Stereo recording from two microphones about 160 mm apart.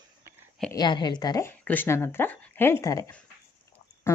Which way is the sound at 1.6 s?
10° left (ahead or behind).